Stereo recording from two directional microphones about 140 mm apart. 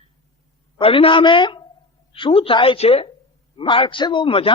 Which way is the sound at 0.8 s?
40° left (ahead or behind).